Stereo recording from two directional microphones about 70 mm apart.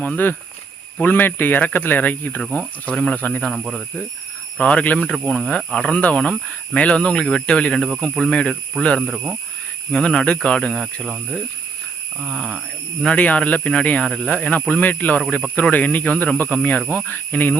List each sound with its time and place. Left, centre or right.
0.0 s speech: left; by 3.2 s centre
3.2 s speech: left
3.5 s speech: centre
4.5 s speech: centre
5.1 s speech: centre
9.0 s speech: centre
9.9 s speech: centre
12.2 s speech: centre
13.1 s speech: centre